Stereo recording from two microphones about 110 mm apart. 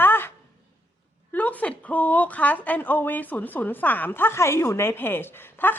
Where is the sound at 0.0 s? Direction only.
20° left (ahead or behind).